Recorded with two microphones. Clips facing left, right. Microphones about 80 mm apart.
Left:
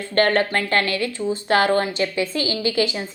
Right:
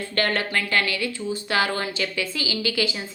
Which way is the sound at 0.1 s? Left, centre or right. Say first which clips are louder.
Left 7 dB; left.